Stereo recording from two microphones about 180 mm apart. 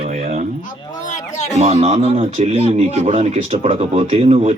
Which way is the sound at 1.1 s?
40° left (ahead or behind).